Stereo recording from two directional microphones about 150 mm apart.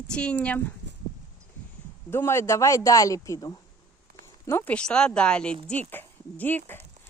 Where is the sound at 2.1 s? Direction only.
15° left (ahead or behind).